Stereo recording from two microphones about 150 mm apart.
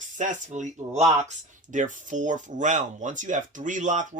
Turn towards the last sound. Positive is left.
turn(degrees=-55)  # may be behind; listen again after turning